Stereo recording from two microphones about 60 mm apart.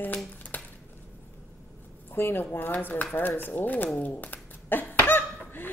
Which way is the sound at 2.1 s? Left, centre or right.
Left.